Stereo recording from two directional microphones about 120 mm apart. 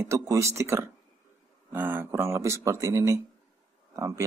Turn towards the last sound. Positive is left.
turn(degrees=-25)  # may be behind; listen again after turning